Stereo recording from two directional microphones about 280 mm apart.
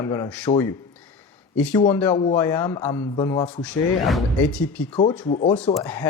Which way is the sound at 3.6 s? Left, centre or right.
Centre.